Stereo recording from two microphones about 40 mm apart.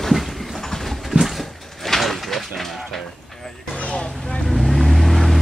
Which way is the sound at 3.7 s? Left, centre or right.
Left.